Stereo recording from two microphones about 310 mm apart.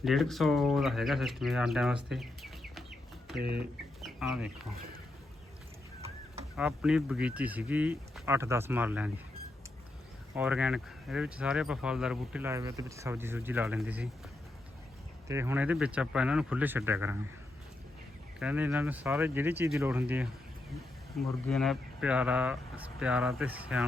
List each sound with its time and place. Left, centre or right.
0.0 s speech: centre
2.0 s bird: centre
3.4 s speech: right
4.0 s speech: centre
6.6 s speech: centre
10.3 s speech: centre
15.3 s speech: centre
18.3 s speech: centre